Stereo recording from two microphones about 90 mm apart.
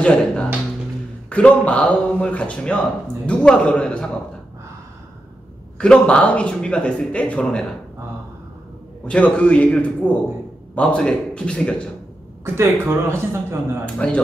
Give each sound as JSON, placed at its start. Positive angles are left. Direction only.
{"t": 0.0, "sound": "speech", "side_deg": 10}
{"t": 5.8, "sound": "speech", "side_deg": 10}
{"t": 9.0, "sound": "speech", "side_deg": 15}
{"t": 12.8, "sound": "a man's voice", "side_deg": -30}
{"t": 13.9, "sound": "speech", "side_deg": 10}